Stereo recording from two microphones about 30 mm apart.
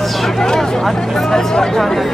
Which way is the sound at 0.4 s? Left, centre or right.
Centre.